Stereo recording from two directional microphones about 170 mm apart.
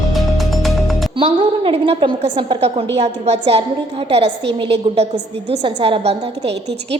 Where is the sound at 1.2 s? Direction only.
30° right (ahead or behind).